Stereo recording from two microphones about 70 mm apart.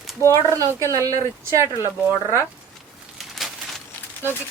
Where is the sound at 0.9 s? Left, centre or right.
Right.